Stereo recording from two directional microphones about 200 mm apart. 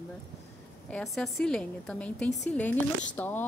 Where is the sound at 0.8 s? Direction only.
5° left (ahead or behind).